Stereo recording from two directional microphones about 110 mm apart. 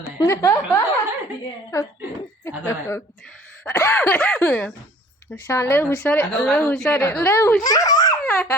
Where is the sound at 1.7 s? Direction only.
30° left (ahead or behind).